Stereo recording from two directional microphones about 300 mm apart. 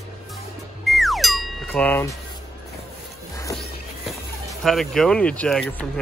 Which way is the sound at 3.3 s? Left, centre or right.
Centre.